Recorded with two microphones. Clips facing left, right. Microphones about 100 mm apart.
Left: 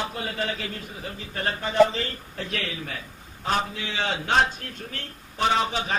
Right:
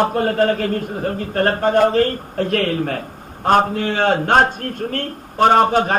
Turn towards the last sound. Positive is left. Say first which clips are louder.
# right 11 dB
turn(degrees=-50)  # may be behind; listen again after turning